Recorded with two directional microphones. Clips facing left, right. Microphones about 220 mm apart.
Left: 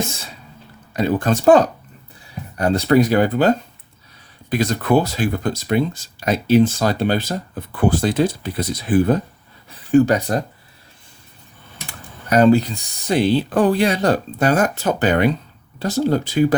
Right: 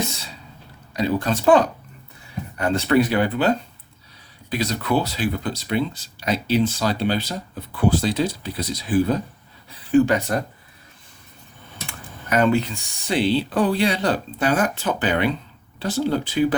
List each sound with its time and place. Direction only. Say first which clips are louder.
0.9 s speech: left 3 dB; 50° left (ahead or behind)
9.6 s speech: left 3 dB; 40° left (ahead or behind)
11.9 s speech: left 4 dB; 35° left (ahead or behind)